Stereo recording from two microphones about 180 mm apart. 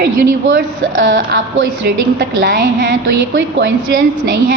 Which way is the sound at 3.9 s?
50° right (ahead or behind).